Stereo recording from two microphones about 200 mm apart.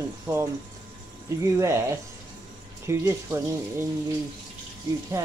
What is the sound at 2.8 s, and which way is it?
Speech, 15° right (ahead or behind).